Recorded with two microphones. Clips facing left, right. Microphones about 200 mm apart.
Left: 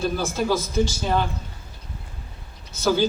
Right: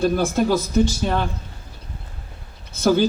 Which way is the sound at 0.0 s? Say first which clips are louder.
Right 5 dB; 55° right (ahead or behind).